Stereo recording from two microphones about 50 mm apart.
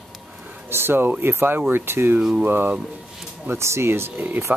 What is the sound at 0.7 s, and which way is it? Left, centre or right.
Speech, right.